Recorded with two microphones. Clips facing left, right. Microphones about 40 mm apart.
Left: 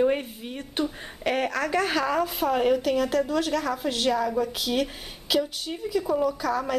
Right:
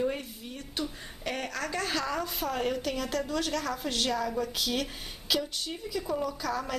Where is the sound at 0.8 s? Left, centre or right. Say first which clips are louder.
Left 7 dB; left.